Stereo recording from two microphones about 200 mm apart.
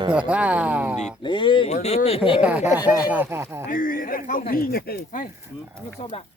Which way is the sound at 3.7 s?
45° left (ahead or behind).